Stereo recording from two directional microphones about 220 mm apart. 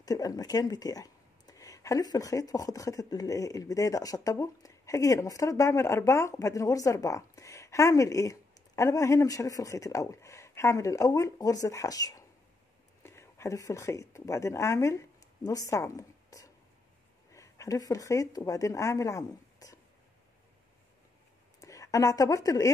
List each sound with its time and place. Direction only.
0.0 s speech: 15° left (ahead or behind)
21.5 s a woman's voice: 15° left (ahead or behind)